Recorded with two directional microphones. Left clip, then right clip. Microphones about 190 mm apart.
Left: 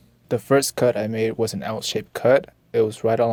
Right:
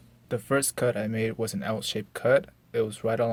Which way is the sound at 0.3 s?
40° left (ahead or behind).